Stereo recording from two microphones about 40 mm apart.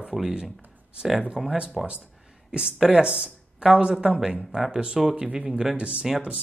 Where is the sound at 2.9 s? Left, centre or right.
Right.